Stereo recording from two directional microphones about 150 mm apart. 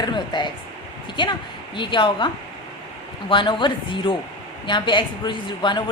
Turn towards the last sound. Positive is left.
turn(degrees=30)  # may be behind; listen again after turning